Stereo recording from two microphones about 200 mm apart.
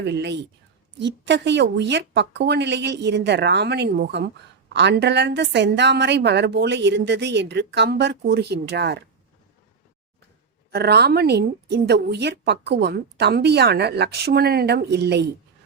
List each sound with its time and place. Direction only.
0.0 s a woman's voice: 60° right (ahead or behind)
10.7 s a woman's voice: 55° right (ahead or behind)